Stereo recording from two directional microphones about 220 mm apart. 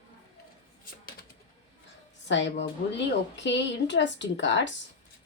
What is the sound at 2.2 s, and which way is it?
A woman's voice, 55° left (ahead or behind).